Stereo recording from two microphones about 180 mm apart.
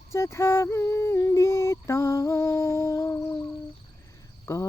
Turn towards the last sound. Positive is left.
turn(degrees=15)  # may be behind; listen again after turning